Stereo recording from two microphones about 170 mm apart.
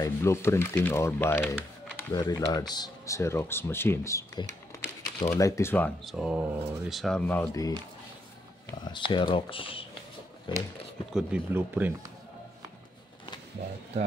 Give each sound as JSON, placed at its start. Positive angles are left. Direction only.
{"t": 0.0, "sound": "speech", "side_deg": 15}
{"t": 6.1, "sound": "speech", "side_deg": -5}
{"t": 8.8, "sound": "speech", "side_deg": 25}
{"t": 11.1, "sound": "speech", "side_deg": -5}
{"t": 13.6, "sound": "speech", "side_deg": -45}